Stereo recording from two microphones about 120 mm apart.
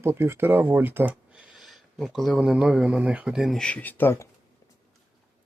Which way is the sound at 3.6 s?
10° left (ahead or behind).